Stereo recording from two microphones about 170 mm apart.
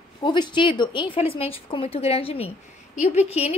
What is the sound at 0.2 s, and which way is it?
A woman's voice, 30° left (ahead or behind).